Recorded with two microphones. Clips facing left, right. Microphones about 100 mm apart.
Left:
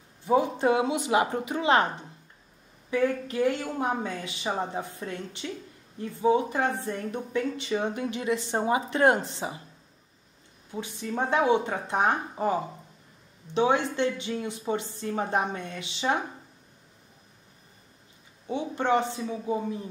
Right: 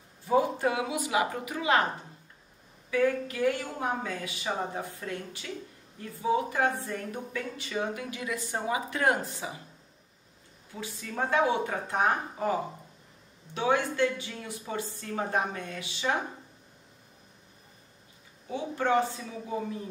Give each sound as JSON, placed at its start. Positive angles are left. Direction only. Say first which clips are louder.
{"t": 0.3, "sound": "speech", "louder": "left 3 dB", "side_deg": 25}
{"t": 2.9, "sound": "speech", "louder": "left 1 dB", "side_deg": 25}
{"t": 10.7, "sound": "speech", "louder": "left 6 dB", "side_deg": 25}
{"t": 18.5, "sound": "speech", "louder": "left 2 dB", "side_deg": 20}